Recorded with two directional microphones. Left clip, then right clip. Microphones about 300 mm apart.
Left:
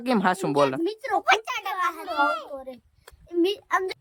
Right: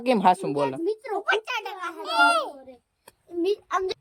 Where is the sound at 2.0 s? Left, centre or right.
Right.